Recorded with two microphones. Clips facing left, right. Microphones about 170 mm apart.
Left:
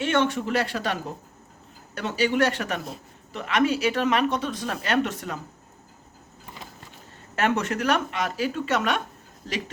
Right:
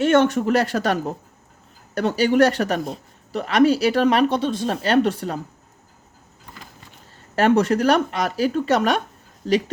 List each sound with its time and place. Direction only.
0.0 s speech: 45° right (ahead or behind)
7.3 s speech: 35° right (ahead or behind)